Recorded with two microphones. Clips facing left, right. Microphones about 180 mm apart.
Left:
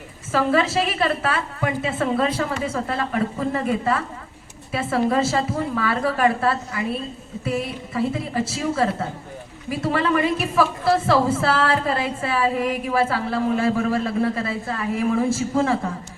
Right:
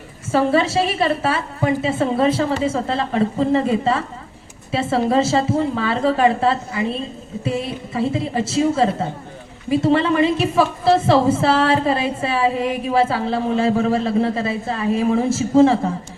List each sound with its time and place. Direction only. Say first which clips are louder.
0.3 s a woman's voice: right 3 dB; 25° right (ahead or behind)